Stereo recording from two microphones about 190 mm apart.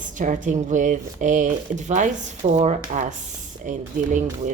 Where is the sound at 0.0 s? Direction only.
40° right (ahead or behind).